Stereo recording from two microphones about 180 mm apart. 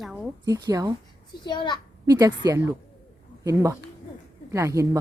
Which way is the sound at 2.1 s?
20° right (ahead or behind).